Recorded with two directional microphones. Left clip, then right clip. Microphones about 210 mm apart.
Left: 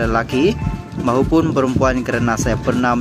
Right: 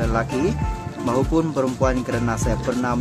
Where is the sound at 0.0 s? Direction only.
20° left (ahead or behind).